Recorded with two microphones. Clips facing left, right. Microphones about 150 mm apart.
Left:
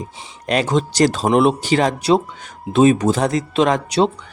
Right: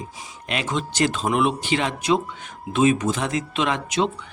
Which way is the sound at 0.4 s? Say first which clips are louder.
Left 8 dB; 40° left (ahead or behind).